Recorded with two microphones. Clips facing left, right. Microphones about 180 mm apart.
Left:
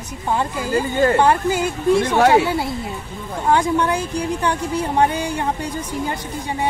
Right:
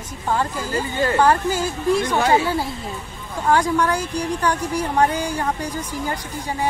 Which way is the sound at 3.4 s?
25° left (ahead or behind).